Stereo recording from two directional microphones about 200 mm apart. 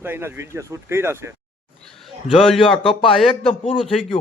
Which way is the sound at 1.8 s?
Centre (ahead or behind).